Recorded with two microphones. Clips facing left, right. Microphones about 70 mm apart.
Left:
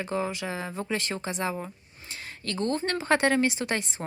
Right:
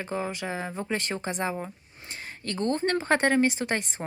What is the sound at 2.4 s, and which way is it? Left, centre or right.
Speech, right.